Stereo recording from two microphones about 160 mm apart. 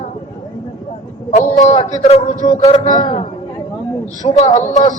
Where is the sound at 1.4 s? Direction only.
45° left (ahead or behind).